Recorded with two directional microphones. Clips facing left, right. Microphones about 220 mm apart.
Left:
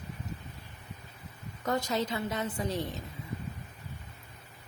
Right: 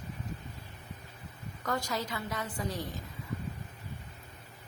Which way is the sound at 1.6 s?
20° left (ahead or behind).